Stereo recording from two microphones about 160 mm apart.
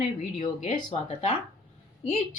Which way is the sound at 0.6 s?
40° left (ahead or behind).